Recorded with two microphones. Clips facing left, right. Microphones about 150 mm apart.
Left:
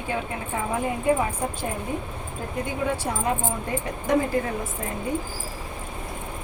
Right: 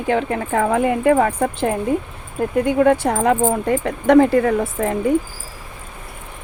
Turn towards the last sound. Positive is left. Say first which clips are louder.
# right 11 dB
turn(degrees=-90)